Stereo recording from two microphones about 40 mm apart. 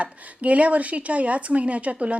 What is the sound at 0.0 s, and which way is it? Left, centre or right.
Speech, right.